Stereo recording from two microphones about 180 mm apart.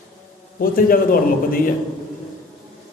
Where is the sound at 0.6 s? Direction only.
55° left (ahead or behind).